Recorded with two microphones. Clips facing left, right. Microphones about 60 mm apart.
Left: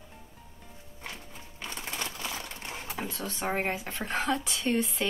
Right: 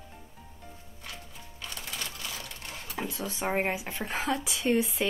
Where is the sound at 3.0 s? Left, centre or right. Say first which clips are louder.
Right 2 dB; centre.